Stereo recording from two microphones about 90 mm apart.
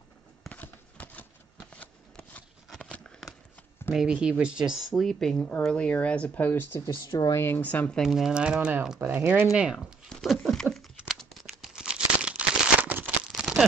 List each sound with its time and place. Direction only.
0.5 s shuffling cards: 20° left (ahead or behind)
3.9 s speech: 10° right (ahead or behind); by 6.8 s 20° left (ahead or behind)
7.1 s speech: 45° left (ahead or behind)
7.3 s speech: 25° left (ahead or behind)
8.0 s speech: 5° right (ahead or behind); by 9.5 s 20° right (ahead or behind)
9.5 s speech: 5° right (ahead or behind)
10.0 s patter: 5° left (ahead or behind)
11.1 s a sound: 5° left (ahead or behind)
11.7 s a sound: 10° right (ahead or behind)
13.3 s crumpling: 5° right (ahead or behind)